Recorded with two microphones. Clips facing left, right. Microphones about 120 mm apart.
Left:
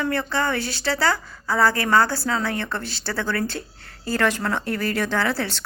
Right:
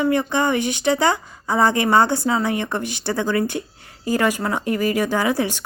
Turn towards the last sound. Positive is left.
turn(degrees=-15)  # may be behind; listen again after turning